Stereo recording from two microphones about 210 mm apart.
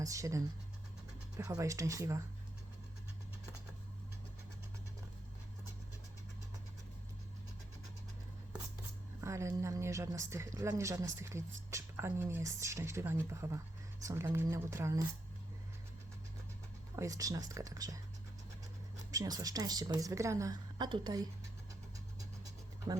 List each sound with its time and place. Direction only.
0.0 s speech: 15° right (ahead or behind)
9.2 s speech: 15° right (ahead or behind)
16.9 s speech: 15° right (ahead or behind)
19.1 s speech: 15° right (ahead or behind)
22.9 s speech: 20° right (ahead or behind)